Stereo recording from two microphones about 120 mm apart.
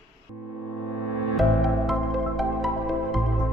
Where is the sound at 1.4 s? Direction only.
Centre (ahead or behind).